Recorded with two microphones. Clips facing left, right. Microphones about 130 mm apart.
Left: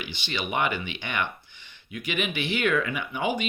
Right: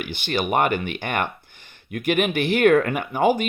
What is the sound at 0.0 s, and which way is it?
Speech, 55° right (ahead or behind).